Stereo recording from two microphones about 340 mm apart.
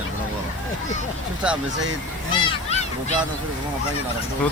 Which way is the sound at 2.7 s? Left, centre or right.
Centre.